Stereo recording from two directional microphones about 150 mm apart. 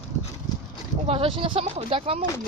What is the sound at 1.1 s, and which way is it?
Speech, 40° right (ahead or behind).